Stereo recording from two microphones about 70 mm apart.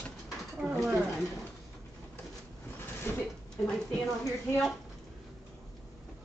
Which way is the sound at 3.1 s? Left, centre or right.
Left.